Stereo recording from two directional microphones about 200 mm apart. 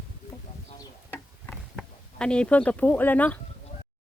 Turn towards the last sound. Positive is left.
turn(degrees=10)  # may be behind; listen again after turning